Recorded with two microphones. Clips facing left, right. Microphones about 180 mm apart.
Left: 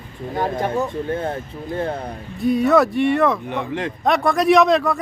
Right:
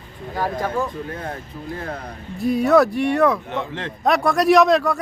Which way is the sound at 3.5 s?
15° left (ahead or behind).